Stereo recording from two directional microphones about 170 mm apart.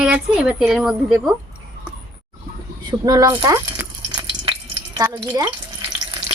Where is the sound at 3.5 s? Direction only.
15° right (ahead or behind).